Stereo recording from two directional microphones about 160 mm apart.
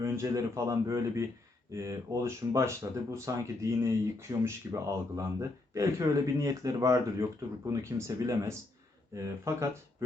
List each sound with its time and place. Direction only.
0.0 s speech: 20° right (ahead or behind)